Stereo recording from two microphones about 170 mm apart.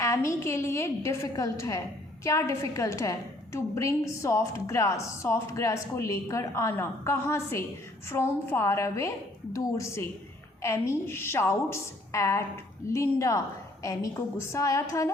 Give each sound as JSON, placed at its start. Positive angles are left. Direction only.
{"t": 0.0, "sound": "a woman's voice", "side_deg": 15}